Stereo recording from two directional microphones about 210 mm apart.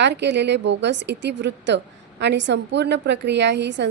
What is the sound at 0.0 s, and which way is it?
A woman's voice, 55° right (ahead or behind).